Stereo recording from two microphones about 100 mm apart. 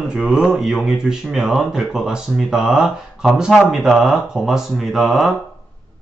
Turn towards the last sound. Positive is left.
turn(degrees=0)  # may be behind; listen again after turning